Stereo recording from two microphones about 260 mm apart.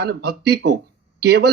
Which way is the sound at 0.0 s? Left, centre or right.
Right.